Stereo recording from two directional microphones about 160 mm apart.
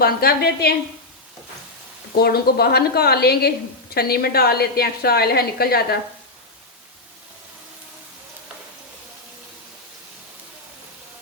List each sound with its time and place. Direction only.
0.0 s a woman's voice: 75° left (ahead or behind)
2.1 s a woman's voice: 75° left (ahead or behind)